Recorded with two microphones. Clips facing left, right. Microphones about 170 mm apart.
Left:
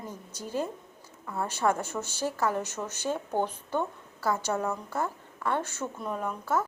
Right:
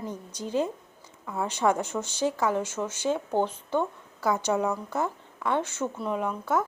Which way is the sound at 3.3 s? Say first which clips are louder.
Right 3 dB; 10° left (ahead or behind).